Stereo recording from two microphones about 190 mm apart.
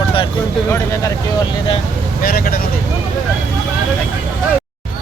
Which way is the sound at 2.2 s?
50° left (ahead or behind).